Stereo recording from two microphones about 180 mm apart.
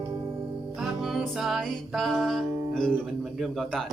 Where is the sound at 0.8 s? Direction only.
Centre (ahead or behind).